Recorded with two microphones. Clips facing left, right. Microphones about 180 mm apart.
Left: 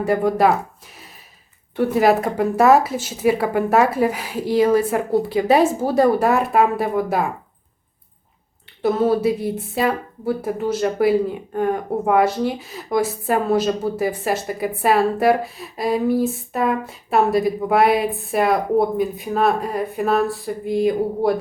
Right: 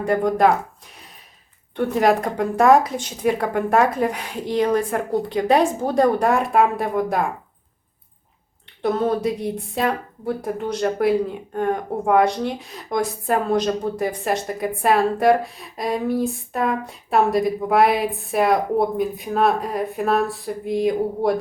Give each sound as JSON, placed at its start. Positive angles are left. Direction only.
{"t": 0.0, "sound": "a woman's voice", "side_deg": 5}
{"t": 1.7, "sound": "a woman's voice", "side_deg": 5}
{"t": 8.8, "sound": "a woman's voice", "side_deg": 5}